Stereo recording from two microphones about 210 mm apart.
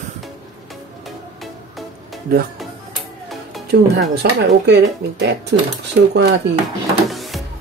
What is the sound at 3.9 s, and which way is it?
Speech, 55° right (ahead or behind).